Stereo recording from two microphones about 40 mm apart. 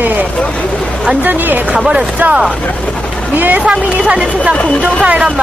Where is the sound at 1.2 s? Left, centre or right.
Right.